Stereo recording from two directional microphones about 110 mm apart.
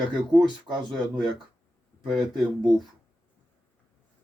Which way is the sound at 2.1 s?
Centre (ahead or behind).